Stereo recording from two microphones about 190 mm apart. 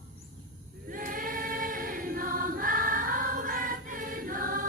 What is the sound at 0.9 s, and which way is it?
Choir, 45° right (ahead or behind).